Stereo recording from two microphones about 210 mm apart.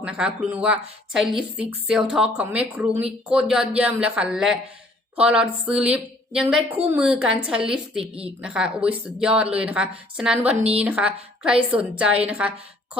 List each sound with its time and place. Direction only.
0.0 s a woman's voice: 5° right (ahead or behind)